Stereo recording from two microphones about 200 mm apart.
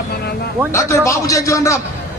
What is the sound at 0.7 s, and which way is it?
A man's voice, 15° left (ahead or behind).